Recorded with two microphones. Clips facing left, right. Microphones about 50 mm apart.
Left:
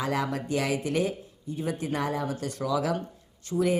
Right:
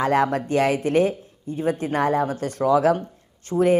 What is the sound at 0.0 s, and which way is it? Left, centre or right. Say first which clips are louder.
Speech: right 9 dB; right.